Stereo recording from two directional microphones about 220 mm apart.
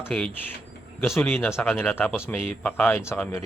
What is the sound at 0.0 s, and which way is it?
Speech, 5° left (ahead or behind).